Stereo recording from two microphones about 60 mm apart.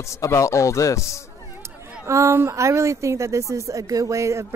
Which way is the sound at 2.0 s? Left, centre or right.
Right.